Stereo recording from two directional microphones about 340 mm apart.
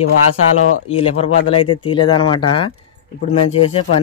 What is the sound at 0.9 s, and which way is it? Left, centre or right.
Speech, centre.